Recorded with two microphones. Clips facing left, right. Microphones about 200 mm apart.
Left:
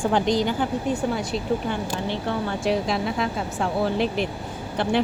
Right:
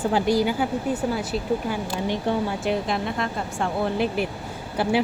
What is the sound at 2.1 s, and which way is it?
Speech, 15° right (ahead or behind).